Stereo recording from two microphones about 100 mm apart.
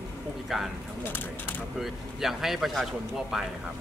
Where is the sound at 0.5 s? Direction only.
Centre (ahead or behind).